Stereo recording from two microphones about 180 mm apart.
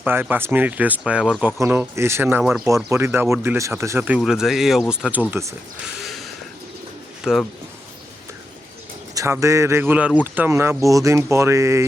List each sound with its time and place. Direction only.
0.0 s speech: 10° right (ahead or behind)
5.3 s speech: 15° right (ahead or behind)
6.0 s a sound: centre (ahead or behind)
7.2 s speech: 5° right (ahead or behind)
9.1 s speech: 15° right (ahead or behind)